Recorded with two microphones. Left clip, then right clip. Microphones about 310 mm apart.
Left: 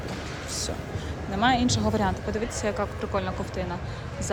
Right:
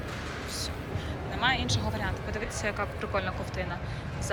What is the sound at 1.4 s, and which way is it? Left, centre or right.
Speech, centre.